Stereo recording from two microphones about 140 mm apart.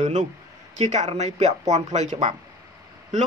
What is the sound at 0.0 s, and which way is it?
A man's voice, 55° right (ahead or behind).